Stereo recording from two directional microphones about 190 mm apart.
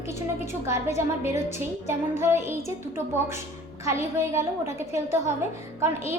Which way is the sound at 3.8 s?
15° right (ahead or behind).